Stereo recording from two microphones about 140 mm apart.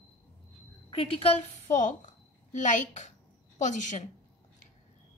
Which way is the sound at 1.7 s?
65° left (ahead or behind).